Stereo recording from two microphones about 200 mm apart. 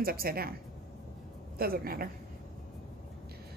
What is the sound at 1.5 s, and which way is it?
Speech, 50° right (ahead or behind).